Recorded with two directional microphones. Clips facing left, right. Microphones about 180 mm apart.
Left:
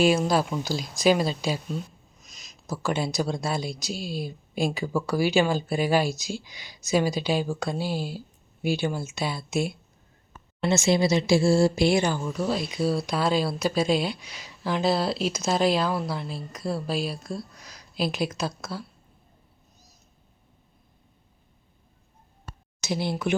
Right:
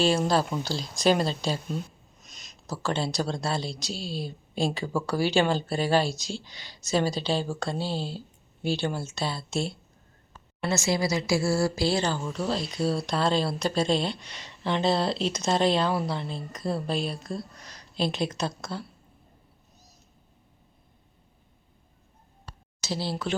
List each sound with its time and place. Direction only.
0.0 s speech: 10° left (ahead or behind)
1.7 s a sound: centre (ahead or behind)
2.8 s speech: 10° left (ahead or behind)
10.6 s speech: 20° left (ahead or behind); by 18.9 s 5° left (ahead or behind)
22.9 s speech: 15° left (ahead or behind)